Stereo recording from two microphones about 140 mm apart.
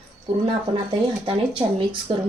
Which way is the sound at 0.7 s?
35° right (ahead or behind).